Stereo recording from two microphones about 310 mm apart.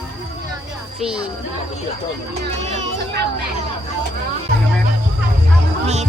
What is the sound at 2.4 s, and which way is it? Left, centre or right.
Speech, right.